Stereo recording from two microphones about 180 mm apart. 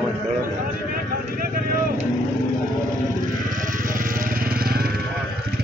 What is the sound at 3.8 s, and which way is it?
Vehicle, 50° right (ahead or behind).